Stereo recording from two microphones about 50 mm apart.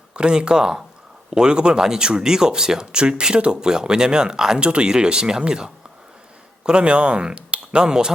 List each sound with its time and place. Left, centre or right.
0.1 s speech: centre